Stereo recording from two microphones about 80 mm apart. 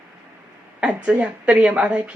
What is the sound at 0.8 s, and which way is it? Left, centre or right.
A woman's voice, centre.